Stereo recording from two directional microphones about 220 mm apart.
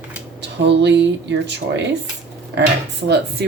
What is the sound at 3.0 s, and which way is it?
Speech, 50° right (ahead or behind).